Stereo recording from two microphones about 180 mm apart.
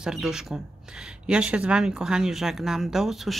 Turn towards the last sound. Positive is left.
turn(degrees=0)  # may be behind; listen again after turning